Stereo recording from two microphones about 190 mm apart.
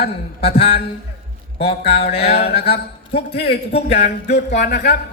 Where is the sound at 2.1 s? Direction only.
30° left (ahead or behind).